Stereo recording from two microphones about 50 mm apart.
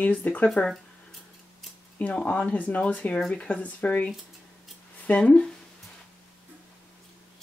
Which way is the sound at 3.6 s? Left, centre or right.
Left.